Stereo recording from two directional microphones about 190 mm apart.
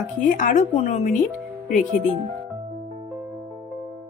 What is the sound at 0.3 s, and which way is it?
A woman's voice, 45° left (ahead or behind).